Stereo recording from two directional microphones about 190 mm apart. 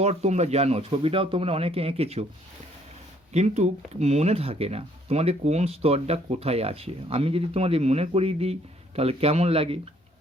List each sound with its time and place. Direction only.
0.0 s speech: 35° right (ahead or behind)
3.3 s speech: 35° right (ahead or behind)